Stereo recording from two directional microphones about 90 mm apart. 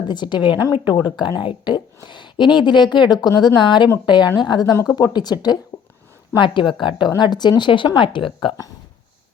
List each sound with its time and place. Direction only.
0.1 s speech: 55° left (ahead or behind)
0.5 s a woman's voice: 15° right (ahead or behind)
0.9 s speech: 55° left (ahead or behind)
6.4 s speech: 65° left (ahead or behind)
7.2 s speech: 55° left (ahead or behind); by 8.5 s 75° left (ahead or behind)